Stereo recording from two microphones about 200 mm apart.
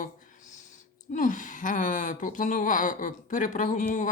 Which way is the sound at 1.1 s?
40° left (ahead or behind).